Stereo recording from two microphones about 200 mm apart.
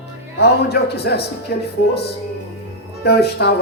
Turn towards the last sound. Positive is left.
turn(degrees=55)  # may be behind; listen again after turning